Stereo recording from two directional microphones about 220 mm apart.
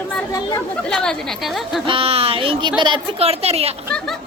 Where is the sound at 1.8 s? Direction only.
25° right (ahead or behind).